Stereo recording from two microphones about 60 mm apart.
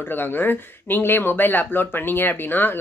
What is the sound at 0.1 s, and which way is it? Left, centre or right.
Speech, left.